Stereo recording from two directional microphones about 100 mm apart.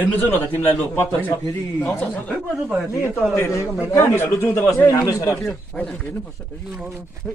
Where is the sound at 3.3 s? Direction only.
25° left (ahead or behind).